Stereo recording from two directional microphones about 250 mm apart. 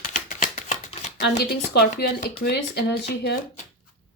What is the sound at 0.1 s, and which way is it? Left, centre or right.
Shuffling cards, left.